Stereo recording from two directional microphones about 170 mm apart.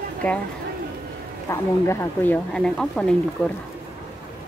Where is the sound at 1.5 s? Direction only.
15° left (ahead or behind).